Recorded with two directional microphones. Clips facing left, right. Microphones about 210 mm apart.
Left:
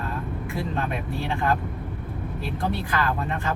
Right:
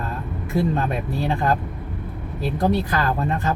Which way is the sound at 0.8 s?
40° right (ahead or behind).